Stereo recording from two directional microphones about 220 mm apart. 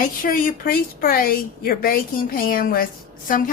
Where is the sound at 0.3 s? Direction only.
40° left (ahead or behind).